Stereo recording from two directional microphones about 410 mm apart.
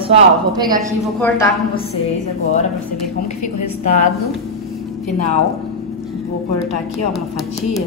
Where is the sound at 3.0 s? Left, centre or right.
Left.